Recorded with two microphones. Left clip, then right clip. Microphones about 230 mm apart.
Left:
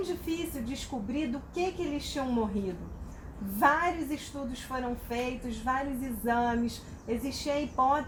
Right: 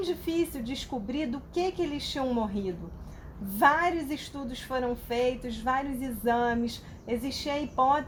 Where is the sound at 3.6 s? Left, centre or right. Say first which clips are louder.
Right 2 dB; right.